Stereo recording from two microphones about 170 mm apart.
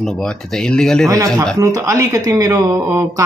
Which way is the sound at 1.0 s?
20° right (ahead or behind).